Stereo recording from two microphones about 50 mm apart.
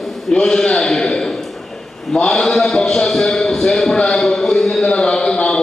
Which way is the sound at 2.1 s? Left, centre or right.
Centre.